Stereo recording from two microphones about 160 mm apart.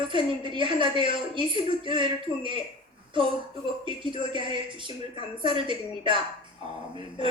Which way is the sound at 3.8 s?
30° right (ahead or behind).